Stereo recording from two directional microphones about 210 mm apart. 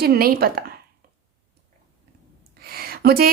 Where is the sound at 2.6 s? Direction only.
45° right (ahead or behind).